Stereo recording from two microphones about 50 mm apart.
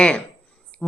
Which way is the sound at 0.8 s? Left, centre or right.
Centre.